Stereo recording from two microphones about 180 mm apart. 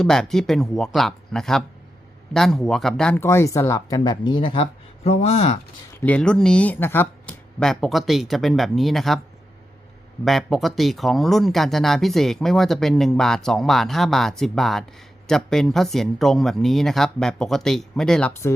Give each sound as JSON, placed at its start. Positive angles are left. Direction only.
{"t": 0.0, "sound": "speech", "side_deg": 5}
{"t": 5.9, "sound": "speech", "side_deg": 10}
{"t": 10.2, "sound": "speech", "side_deg": 0}